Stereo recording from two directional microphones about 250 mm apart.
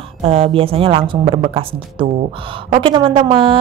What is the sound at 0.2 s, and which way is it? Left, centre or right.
A woman's voice, right.